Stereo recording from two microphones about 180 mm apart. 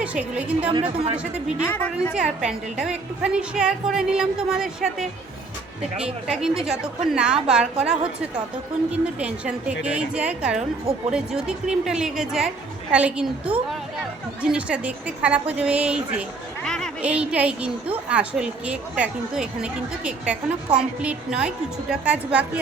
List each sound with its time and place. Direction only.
0.0 s a woman's voice: 5° right (ahead or behind)
0.7 s a woman's voice: 30° right (ahead or behind)
1.6 s a woman's voice: 10° left (ahead or behind)
2.1 s a woman's voice: 5° right (ahead or behind)
6.2 s a woman's voice: 5° right (ahead or behind)
9.1 s a woman's voice: 5° right (ahead or behind)
14.5 s a woman's voice: 5° right (ahead or behind)